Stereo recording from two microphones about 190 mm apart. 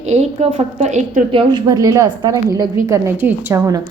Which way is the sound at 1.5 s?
20° right (ahead or behind).